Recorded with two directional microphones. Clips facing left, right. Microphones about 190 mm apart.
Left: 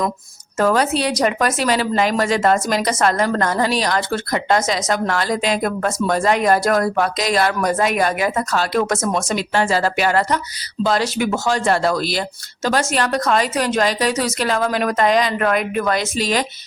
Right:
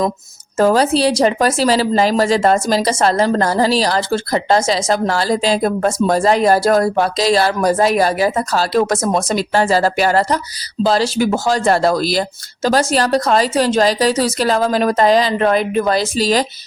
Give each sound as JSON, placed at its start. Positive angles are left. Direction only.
{"t": 0.6, "sound": "speech", "side_deg": -35}